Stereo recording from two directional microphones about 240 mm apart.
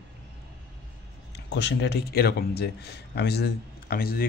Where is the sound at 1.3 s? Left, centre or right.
Left.